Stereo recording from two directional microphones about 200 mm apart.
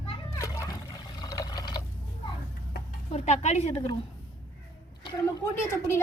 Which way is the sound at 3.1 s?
35° left (ahead or behind).